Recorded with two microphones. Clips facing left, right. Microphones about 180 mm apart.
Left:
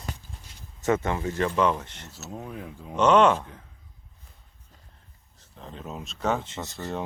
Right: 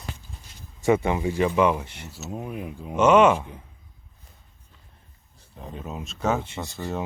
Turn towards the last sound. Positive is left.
turn(degrees=-5)  # may be behind; listen again after turning